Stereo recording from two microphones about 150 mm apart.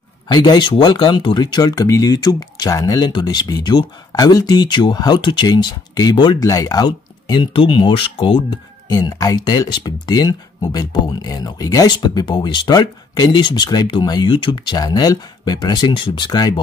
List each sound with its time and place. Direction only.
0.3 s speech: 30° left (ahead or behind)